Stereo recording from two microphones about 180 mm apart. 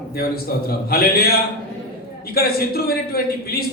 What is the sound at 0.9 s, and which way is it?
Speech, 60° left (ahead or behind).